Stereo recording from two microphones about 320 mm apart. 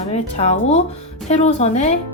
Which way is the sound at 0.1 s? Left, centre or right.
Centre.